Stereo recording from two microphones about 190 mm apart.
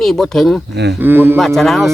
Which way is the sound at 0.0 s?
Centre (ahead or behind).